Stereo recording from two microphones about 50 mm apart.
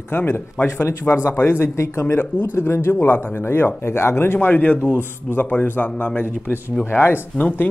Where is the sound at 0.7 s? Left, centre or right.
Left.